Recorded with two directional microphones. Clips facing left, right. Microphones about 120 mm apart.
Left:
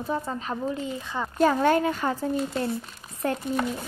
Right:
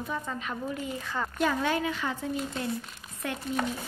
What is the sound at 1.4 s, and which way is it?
Speech, 40° left (ahead or behind).